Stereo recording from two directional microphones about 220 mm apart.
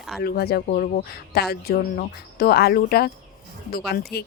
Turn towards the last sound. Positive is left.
turn(degrees=45)  # may be behind; listen again after turning